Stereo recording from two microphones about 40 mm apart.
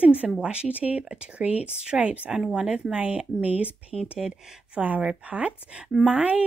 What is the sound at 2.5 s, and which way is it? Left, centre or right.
Speech, right.